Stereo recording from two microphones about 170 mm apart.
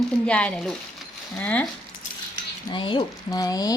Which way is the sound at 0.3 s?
5° left (ahead or behind).